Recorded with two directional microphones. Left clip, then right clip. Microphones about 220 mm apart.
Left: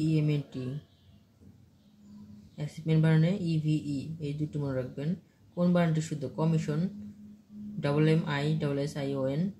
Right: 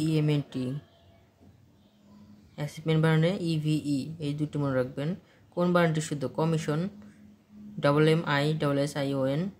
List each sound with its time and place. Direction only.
0.0 s speech: 45° right (ahead or behind)
2.5 s speech: 45° right (ahead or behind)